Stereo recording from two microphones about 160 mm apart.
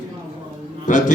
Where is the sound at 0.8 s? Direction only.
50° left (ahead or behind).